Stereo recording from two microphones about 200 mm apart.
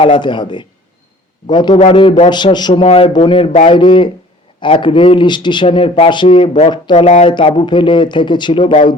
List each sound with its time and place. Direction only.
0.0 s a man's voice: 25° left (ahead or behind)